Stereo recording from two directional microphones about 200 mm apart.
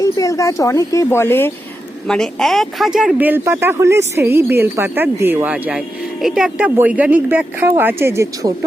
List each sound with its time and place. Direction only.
0.0 s speech: 15° left (ahead or behind); by 8.5 s 15° right (ahead or behind)